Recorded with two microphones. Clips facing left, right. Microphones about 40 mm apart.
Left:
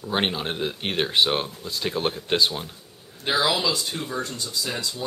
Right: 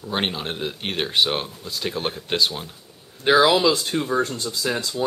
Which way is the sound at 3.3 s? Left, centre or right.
Right.